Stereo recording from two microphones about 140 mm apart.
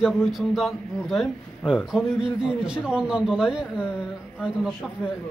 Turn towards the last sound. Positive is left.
turn(degrees=-5)  # may be behind; listen again after turning